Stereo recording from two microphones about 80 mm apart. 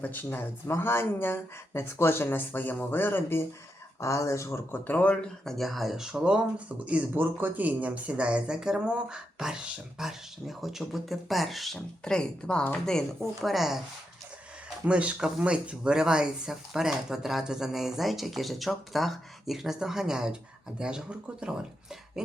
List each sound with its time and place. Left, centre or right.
0.0 s speech: left
4.0 s speech: left
4.9 s speech: centre
5.5 s speech: centre
14.8 s speech: centre